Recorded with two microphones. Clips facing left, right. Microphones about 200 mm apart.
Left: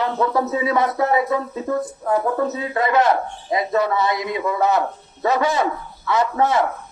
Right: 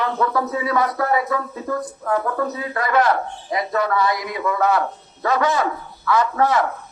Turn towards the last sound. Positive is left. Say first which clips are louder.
# even
turn(degrees=25)  # may be behind; listen again after turning